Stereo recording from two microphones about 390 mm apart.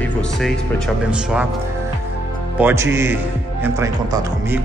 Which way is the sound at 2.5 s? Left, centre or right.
Centre.